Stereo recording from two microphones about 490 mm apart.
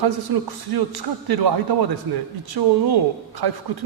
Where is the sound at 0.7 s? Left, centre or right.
Right.